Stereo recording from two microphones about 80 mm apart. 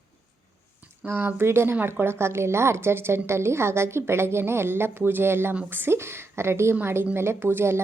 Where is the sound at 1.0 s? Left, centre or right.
Right.